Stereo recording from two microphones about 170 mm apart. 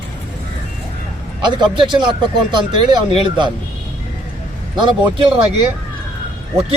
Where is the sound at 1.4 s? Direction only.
25° right (ahead or behind).